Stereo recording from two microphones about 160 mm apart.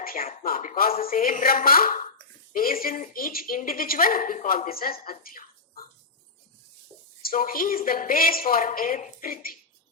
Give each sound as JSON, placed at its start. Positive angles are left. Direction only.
{"t": 0.0, "sound": "a sound", "side_deg": 65}
{"t": 0.4, "sound": "speech", "side_deg": 60}
{"t": 7.2, "sound": "speech", "side_deg": 65}